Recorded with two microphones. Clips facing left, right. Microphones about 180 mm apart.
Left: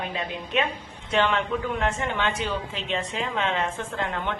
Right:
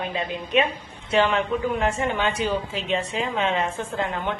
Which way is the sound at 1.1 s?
5° right (ahead or behind).